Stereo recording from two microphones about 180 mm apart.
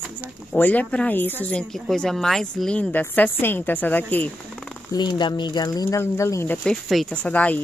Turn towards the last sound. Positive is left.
turn(degrees=10)  # may be behind; listen again after turning